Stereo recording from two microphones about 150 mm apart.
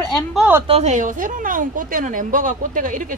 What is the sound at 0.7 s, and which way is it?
Speech, 45° right (ahead or behind).